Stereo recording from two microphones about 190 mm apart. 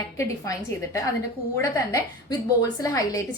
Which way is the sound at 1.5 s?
15° left (ahead or behind).